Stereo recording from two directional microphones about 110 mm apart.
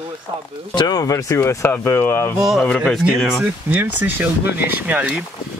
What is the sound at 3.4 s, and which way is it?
Speech, 15° right (ahead or behind).